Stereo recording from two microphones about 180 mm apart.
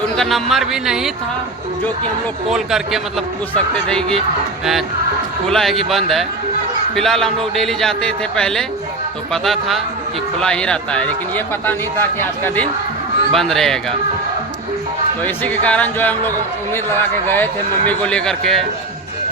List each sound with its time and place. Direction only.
0.2 s a man's voice: centre (ahead or behind)
2.5 s a man's voice: centre (ahead or behind)
5.5 s a man's voice: centre (ahead or behind)
15.2 s a man's voice: 10° left (ahead or behind)